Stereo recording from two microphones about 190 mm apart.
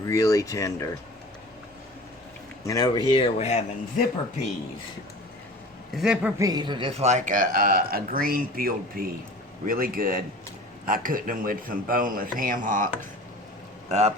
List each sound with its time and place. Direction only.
0.0 s speech: 15° left (ahead or behind)
2.6 s speech: 20° left (ahead or behind)
5.9 s a man's voice: 5° right (ahead or behind)
6.4 s speech: 20° right (ahead or behind); by 12.9 s 45° right (ahead or behind)